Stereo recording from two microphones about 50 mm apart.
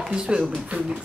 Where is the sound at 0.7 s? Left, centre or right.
Right.